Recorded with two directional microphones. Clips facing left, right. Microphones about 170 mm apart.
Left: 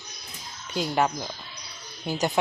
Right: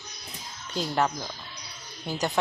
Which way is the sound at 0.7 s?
10° left (ahead or behind).